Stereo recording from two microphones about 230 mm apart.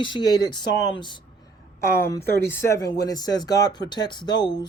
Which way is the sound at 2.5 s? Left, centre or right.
Centre.